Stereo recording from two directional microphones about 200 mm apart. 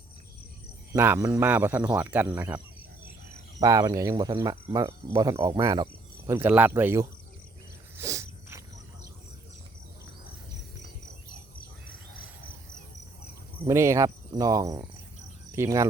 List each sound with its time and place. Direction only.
0.9 s speech: 10° right (ahead or behind)
3.6 s speech: 15° right (ahead or behind)
7.9 s a sound: 15° right (ahead or behind)
13.7 s speech: 15° right (ahead or behind)